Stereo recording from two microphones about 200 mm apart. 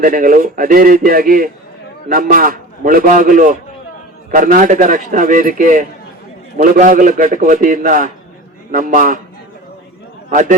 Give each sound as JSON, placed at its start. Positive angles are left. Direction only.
{"t": 0.0, "sound": "a man's voice", "side_deg": -45}